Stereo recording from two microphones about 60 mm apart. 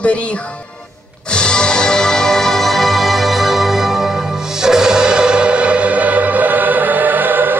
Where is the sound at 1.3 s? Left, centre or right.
Centre.